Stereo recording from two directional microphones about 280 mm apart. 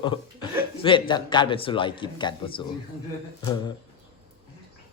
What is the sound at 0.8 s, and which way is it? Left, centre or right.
Speech, centre.